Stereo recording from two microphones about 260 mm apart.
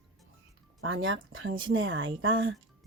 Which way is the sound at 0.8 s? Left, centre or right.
Right.